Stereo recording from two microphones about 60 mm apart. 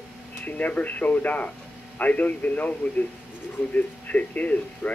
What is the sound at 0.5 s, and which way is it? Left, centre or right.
Speech, left.